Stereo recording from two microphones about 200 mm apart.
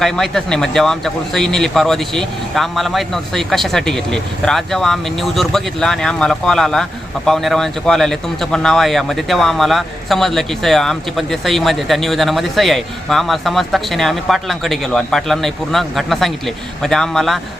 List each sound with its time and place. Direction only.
0.0 s speech: centre (ahead or behind)